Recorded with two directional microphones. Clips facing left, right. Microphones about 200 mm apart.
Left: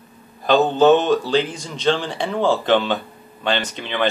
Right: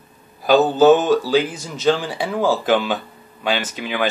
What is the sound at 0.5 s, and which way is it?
Speech, 5° right (ahead or behind).